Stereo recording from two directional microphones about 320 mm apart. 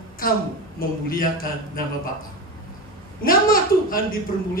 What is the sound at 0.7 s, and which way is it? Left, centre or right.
Speech, left.